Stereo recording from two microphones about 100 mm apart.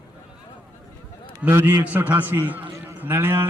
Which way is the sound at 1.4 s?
20° right (ahead or behind).